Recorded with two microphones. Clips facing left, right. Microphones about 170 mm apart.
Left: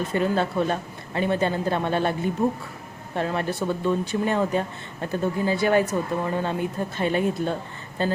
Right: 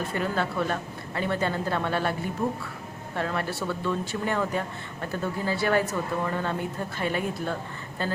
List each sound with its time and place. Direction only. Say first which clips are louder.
0.1 s a woman's voice: left 5 dB; 25° left (ahead or behind)
3.2 s a woman's voice: left 4 dB; 20° left (ahead or behind)